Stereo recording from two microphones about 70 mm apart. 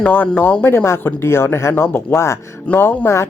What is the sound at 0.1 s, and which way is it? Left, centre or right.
Speech, left.